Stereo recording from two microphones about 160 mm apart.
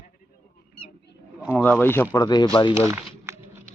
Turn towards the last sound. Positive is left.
turn(degrees=-15)  # may be behind; listen again after turning